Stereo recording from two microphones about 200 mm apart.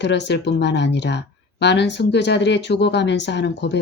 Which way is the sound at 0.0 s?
60° left (ahead or behind).